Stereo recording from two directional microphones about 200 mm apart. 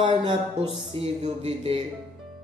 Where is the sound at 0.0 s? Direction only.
25° right (ahead or behind).